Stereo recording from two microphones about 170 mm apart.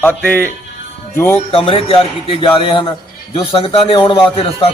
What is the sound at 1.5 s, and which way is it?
A man's voice, 35° left (ahead or behind).